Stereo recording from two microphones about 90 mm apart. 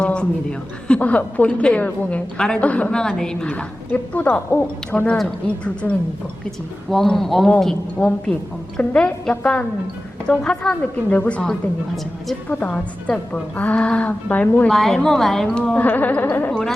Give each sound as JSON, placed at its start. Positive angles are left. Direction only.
{"t": 0.0, "sound": "a sound", "side_deg": 10}
{"t": 0.9, "sound": "a woman's voice", "side_deg": 15}
{"t": 6.9, "sound": "a man's voice", "side_deg": 5}
{"t": 7.9, "sound": "a woman's voice", "side_deg": 15}
{"t": 12.5, "sound": "a woman's voice", "side_deg": 15}
{"t": 14.7, "sound": "a woman's voice", "side_deg": 5}
{"t": 16.5, "sound": "a man's voice", "side_deg": 5}